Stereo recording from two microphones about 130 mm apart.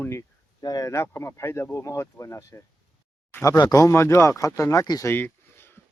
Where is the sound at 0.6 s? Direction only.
30° left (ahead or behind).